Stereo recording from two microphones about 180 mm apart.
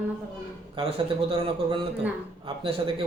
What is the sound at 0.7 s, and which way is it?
Speech, 30° right (ahead or behind).